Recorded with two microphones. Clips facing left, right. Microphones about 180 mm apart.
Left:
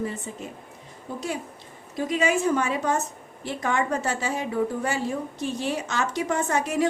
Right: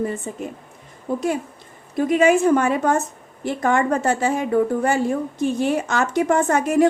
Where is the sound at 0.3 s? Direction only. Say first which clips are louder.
Right 6 dB; 50° right (ahead or behind).